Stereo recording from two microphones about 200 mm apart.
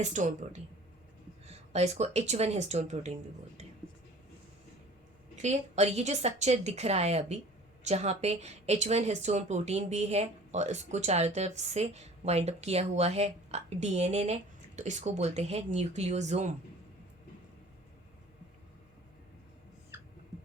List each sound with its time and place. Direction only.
0.0 s speech: 35° right (ahead or behind)
5.4 s speech: 35° right (ahead or behind)